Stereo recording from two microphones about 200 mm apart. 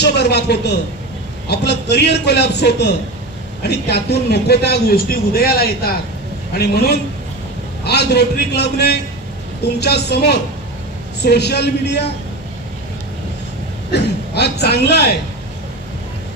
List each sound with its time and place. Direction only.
0.0 s a man's voice: 55° left (ahead or behind)
13.9 s speech: 55° left (ahead or behind)